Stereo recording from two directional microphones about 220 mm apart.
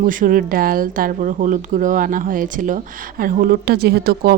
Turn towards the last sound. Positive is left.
turn(degrees=-45)  # may be behind; listen again after turning